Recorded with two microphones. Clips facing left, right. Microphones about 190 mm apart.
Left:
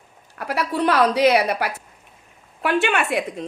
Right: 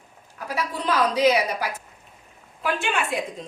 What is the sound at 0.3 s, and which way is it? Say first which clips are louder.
A woman's voice: left 6 dB; 70° left (ahead or behind).